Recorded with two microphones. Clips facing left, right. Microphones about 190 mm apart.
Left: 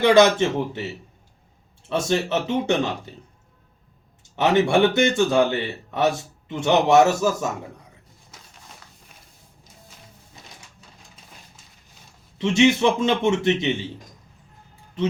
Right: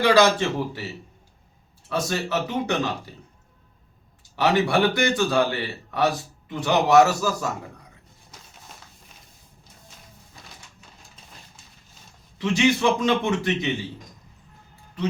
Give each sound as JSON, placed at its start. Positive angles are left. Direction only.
{"t": 0.0, "sound": "speech", "side_deg": 20}
{"t": 1.9, "sound": "speech", "side_deg": 25}
{"t": 4.4, "sound": "speech", "side_deg": 25}
{"t": 12.4, "sound": "speech", "side_deg": 25}